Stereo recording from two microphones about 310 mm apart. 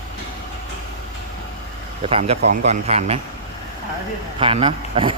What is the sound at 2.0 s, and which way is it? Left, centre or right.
Speech, centre.